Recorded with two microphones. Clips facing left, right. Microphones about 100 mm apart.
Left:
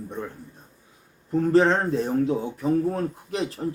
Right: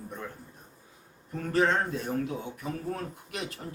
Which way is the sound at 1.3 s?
30° left (ahead or behind).